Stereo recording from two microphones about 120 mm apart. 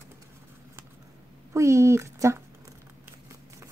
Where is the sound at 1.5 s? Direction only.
25° right (ahead or behind).